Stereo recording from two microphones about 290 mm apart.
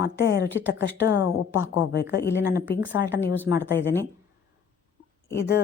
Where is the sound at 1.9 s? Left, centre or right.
Left.